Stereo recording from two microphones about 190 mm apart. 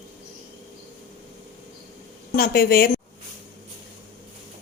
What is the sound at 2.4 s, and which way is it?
Speech, 55° left (ahead or behind).